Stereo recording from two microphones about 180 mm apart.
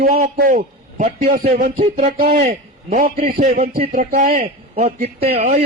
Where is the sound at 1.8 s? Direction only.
35° right (ahead or behind).